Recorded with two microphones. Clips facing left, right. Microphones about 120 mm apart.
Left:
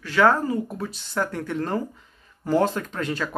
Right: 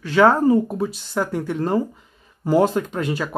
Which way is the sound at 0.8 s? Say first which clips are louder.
Right 4 dB; 10° right (ahead or behind).